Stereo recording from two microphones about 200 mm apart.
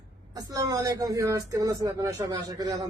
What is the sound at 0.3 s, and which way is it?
Speech, 20° right (ahead or behind).